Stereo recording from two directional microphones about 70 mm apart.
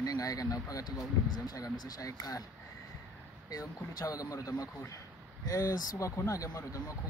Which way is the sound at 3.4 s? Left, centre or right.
Left.